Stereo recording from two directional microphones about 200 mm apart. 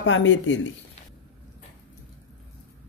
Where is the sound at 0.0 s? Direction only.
70° left (ahead or behind).